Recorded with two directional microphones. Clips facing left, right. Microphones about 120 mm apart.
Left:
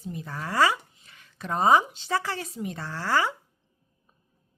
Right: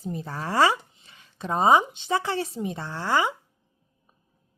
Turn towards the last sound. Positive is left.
turn(degrees=-20)  # may be behind; listen again after turning